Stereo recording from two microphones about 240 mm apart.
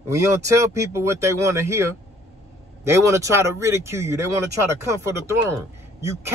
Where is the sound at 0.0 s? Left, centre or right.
Centre.